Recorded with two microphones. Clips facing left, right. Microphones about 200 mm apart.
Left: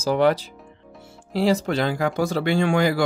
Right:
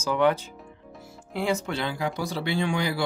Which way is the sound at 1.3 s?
35° left (ahead or behind).